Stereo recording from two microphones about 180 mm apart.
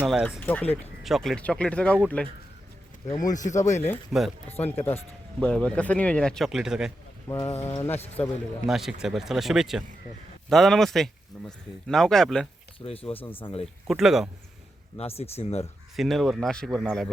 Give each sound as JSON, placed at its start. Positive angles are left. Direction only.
{"t": 0.0, "sound": "speech", "side_deg": -5}
{"t": 0.3, "sound": "speech", "side_deg": 10}
{"t": 3.3, "sound": "speech", "side_deg": 45}
{"t": 3.8, "sound": "speech", "side_deg": 10}
{"t": 7.3, "sound": "speech", "side_deg": 15}
{"t": 8.6, "sound": "speech", "side_deg": 0}
{"t": 12.8, "sound": "speech", "side_deg": 30}
{"t": 13.1, "sound": "speech", "side_deg": 10}
{"t": 13.4, "sound": "speech", "side_deg": 35}
{"t": 13.8, "sound": "speech", "side_deg": 0}
{"t": 14.9, "sound": "speech", "side_deg": 35}
{"t": 16.0, "sound": "speech", "side_deg": 0}